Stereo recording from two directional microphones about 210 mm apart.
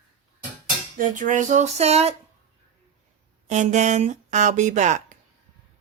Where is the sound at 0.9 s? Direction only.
35° right (ahead or behind).